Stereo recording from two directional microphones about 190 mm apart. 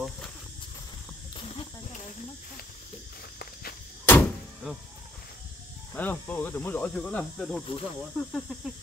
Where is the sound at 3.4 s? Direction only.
55° left (ahead or behind).